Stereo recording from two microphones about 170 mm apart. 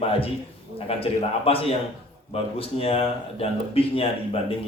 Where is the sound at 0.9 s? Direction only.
35° left (ahead or behind).